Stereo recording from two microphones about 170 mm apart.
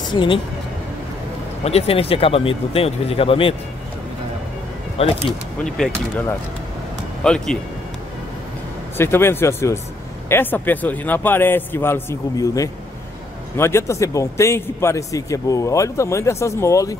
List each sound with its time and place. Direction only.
0.1 s speech: 30° left (ahead or behind)
1.6 s speech: 40° left (ahead or behind)
5.0 s speech: 35° left (ahead or behind)
7.2 s speech: 5° left (ahead or behind)
8.9 s a man's voice: 15° left (ahead or behind)